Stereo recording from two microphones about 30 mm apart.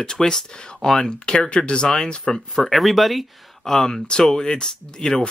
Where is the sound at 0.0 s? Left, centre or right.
Left.